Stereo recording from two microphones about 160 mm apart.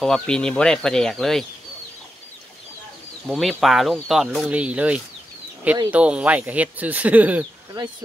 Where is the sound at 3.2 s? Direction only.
Centre (ahead or behind).